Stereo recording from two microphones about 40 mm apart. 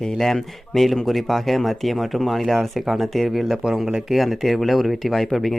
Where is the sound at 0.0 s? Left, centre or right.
Centre.